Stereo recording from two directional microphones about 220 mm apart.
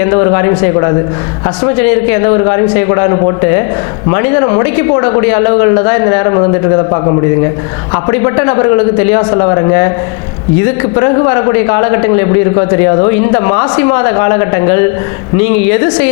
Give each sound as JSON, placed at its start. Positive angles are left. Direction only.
{"t": 0.0, "sound": "a man's voice", "side_deg": 20}
{"t": 2.2, "sound": "a man's voice", "side_deg": 20}
{"t": 10.9, "sound": "a man's voice", "side_deg": 20}